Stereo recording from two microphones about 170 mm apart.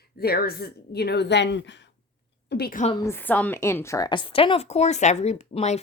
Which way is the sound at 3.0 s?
10° left (ahead or behind).